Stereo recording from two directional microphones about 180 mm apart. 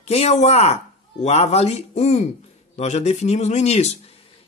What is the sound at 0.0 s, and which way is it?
Speech, 35° left (ahead or behind).